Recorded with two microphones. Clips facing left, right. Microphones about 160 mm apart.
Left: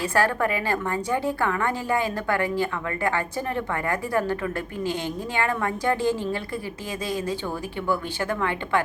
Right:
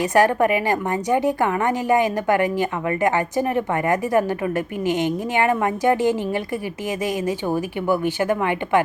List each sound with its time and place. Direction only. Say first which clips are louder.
0.0 s a woman's voice: right 6 dB; 20° right (ahead or behind)